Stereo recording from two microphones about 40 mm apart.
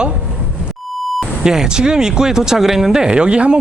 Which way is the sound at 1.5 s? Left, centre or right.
Centre.